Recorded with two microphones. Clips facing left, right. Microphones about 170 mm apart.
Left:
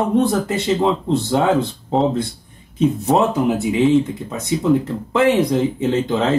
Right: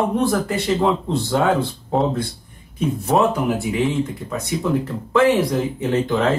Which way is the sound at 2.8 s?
20° left (ahead or behind).